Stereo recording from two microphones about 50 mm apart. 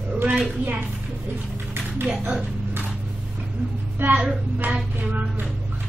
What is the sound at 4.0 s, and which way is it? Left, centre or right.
Speech, right.